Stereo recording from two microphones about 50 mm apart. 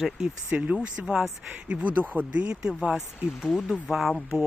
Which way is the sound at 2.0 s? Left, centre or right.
Right.